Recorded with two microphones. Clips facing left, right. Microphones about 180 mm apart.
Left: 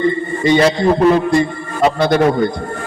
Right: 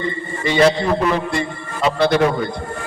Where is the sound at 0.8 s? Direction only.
45° left (ahead or behind).